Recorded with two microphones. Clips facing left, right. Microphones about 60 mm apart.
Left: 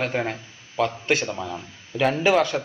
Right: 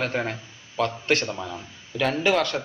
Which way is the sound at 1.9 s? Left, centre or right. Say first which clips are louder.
Left 3 dB; centre.